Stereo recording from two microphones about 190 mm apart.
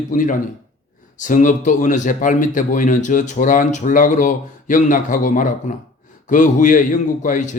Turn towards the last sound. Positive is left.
turn(degrees=40)  # may be behind; listen again after turning